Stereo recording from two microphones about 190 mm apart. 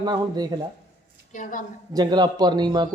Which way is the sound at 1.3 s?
40° left (ahead or behind).